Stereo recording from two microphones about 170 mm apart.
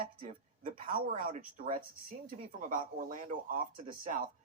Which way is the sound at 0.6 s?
55° right (ahead or behind).